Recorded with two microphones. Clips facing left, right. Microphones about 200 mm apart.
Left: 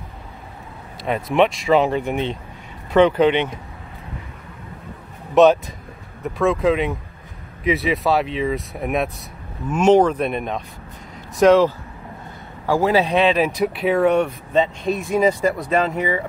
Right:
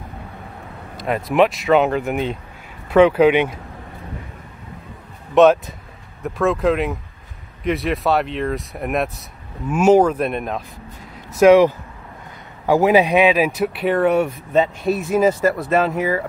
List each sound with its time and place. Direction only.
0.9 s speech: centre (ahead or behind)
5.3 s speech: centre (ahead or behind)
11.3 s speech: 10° right (ahead or behind)